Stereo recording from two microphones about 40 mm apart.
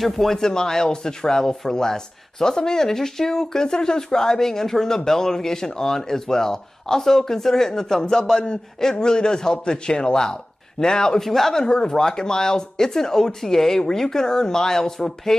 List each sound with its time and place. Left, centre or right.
0.0 s a man's voice: centre
11.6 s speech: centre